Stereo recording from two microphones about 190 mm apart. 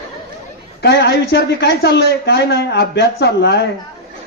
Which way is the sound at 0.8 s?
60° left (ahead or behind).